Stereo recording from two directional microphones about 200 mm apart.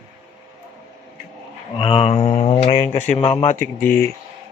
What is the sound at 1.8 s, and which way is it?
Speech, 25° left (ahead or behind).